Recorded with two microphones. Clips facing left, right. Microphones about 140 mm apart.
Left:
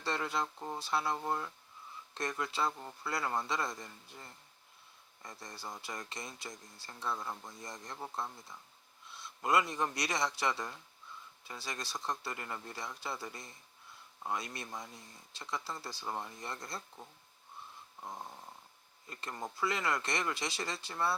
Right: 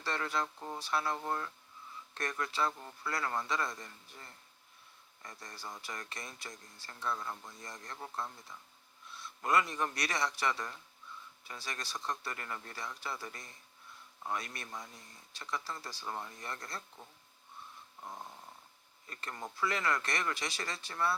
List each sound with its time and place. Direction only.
0.0 s speech: 20° left (ahead or behind)